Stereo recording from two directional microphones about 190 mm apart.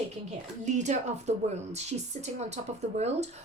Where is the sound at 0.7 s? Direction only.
35° right (ahead or behind).